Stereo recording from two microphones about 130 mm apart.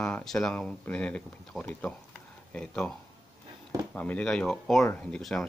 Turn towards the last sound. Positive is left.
turn(degrees=5)  # may be behind; listen again after turning